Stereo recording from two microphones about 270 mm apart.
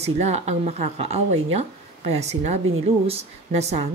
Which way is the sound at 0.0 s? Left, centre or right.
Right.